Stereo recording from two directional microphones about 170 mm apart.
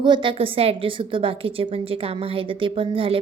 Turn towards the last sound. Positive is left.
turn(degrees=-35)  # may be behind; listen again after turning